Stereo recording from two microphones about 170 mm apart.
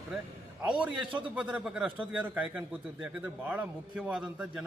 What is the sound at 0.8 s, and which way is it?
A man's voice, 5° right (ahead or behind).